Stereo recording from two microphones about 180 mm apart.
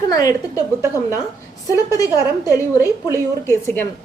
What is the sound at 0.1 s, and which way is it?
Speech, 20° left (ahead or behind).